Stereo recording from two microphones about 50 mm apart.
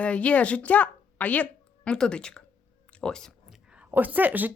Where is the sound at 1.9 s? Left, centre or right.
Centre.